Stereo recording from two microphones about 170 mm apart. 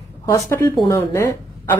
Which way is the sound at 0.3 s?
15° left (ahead or behind).